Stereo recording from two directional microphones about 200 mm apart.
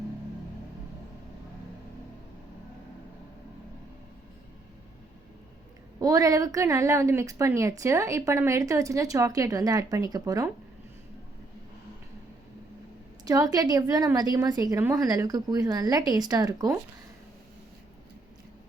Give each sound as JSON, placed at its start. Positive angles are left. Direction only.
{"t": 6.0, "sound": "a woman's voice", "side_deg": -15}
{"t": 13.2, "sound": "a woman's voice", "side_deg": -15}